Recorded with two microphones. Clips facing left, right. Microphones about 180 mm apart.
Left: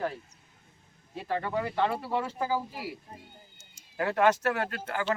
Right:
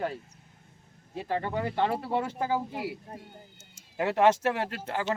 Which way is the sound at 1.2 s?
25° right (ahead or behind).